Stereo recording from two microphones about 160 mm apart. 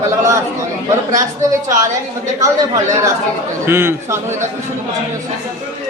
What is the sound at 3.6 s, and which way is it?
Speech, 15° right (ahead or behind).